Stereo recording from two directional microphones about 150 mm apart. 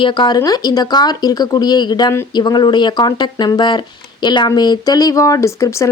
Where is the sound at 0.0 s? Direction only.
30° left (ahead or behind).